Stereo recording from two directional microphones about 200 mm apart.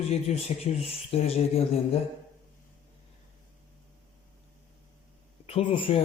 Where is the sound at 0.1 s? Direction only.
30° left (ahead or behind).